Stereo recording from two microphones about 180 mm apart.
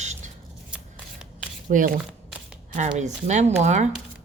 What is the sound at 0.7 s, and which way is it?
Scissors, 5° right (ahead or behind).